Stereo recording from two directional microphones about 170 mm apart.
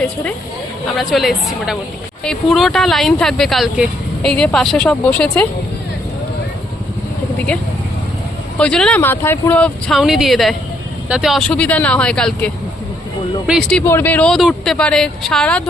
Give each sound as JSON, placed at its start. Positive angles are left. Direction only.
{"t": 0.9, "sound": "speech", "side_deg": 0}
{"t": 8.5, "sound": "speech", "side_deg": 5}
{"t": 13.5, "sound": "speech", "side_deg": 0}
{"t": 13.8, "sound": "speech", "side_deg": 10}